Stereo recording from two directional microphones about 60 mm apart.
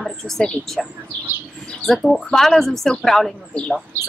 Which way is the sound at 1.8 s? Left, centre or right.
Centre.